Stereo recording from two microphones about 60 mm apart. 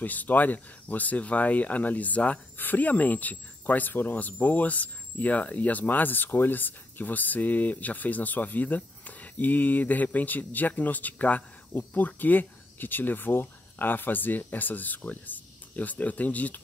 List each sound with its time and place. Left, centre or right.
0.0 s speech: left